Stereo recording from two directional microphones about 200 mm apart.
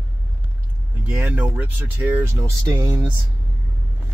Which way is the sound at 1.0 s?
5° right (ahead or behind).